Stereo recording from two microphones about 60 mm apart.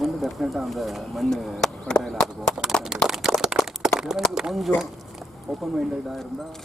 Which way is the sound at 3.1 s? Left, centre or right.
Centre.